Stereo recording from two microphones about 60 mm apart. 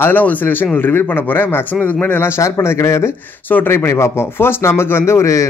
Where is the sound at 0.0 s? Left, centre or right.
Left.